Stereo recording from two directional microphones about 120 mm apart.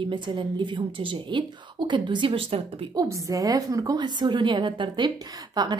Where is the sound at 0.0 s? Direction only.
40° right (ahead or behind).